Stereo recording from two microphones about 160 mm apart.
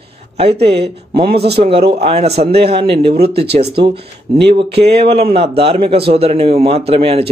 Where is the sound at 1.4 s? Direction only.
35° right (ahead or behind).